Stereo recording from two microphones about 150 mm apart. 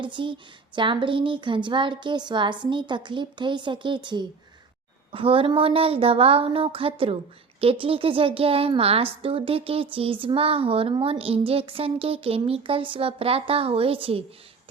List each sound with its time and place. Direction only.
0.0 s a woman's voice: 30° right (ahead or behind)